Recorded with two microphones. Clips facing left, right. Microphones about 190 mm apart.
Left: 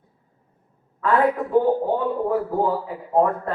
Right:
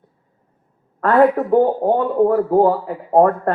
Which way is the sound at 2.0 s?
55° right (ahead or behind).